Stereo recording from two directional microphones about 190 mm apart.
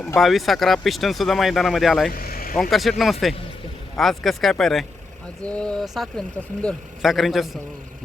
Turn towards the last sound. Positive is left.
turn(degrees=0)  # may be behind; listen again after turning